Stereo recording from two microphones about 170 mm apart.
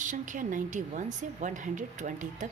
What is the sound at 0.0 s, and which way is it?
Speech, 50° right (ahead or behind).